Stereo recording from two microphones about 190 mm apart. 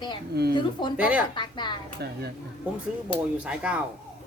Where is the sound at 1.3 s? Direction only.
25° left (ahead or behind).